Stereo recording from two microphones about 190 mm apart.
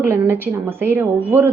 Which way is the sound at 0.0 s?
10° right (ahead or behind).